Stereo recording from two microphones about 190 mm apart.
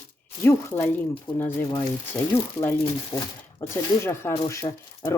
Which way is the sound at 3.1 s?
25° left (ahead or behind).